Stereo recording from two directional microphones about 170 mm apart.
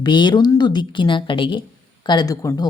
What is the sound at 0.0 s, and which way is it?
Speech, 25° left (ahead or behind).